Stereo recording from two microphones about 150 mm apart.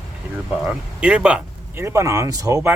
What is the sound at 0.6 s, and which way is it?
Speech, 5° right (ahead or behind).